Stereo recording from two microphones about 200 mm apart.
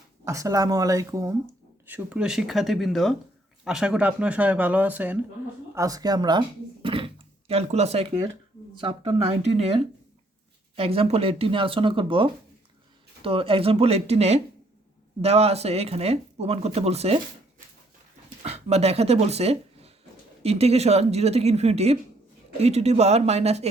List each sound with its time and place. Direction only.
0.3 s speech: 15° right (ahead or behind)
18.4 s speech: 30° right (ahead or behind)